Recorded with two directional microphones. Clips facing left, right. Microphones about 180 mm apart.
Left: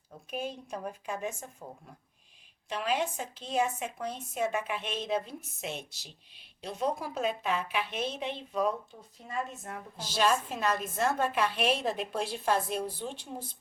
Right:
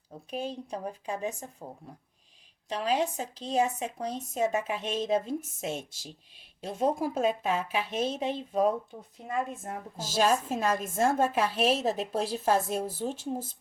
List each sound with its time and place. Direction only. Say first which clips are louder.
0.3 s speech: right 2 dB; 35° right (ahead or behind)
2.6 s a woman's voice: right 3 dB; 35° right (ahead or behind)